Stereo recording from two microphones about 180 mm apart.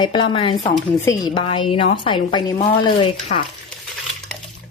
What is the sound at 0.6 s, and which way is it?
Speech, 15° left (ahead or behind).